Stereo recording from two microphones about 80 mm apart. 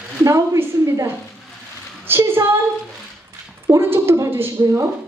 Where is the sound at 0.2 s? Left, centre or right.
Right.